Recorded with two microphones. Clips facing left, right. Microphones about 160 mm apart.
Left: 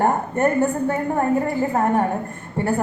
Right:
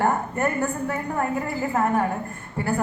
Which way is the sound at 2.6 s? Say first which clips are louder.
Left 3 dB; 30° left (ahead or behind).